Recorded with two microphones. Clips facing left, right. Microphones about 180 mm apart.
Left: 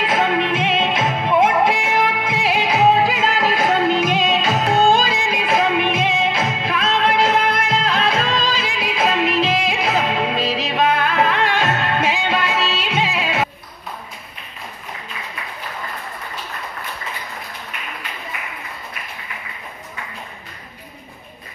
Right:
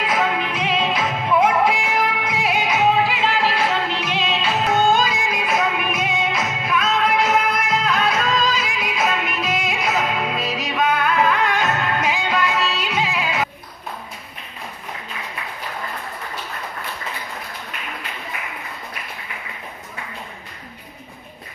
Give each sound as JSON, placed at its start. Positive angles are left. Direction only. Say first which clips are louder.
{"t": 0.0, "sound": "music", "louder": "left 3 dB", "side_deg": 25}